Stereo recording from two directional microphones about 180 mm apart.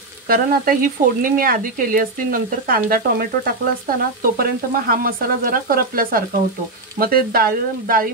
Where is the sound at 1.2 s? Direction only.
50° right (ahead or behind).